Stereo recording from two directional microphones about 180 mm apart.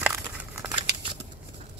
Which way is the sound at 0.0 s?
10° right (ahead or behind).